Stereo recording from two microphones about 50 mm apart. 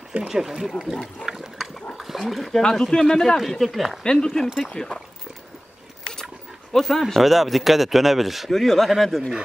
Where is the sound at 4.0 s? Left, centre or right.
Centre.